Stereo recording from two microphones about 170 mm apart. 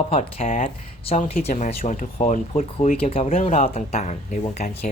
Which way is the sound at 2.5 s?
30° left (ahead or behind).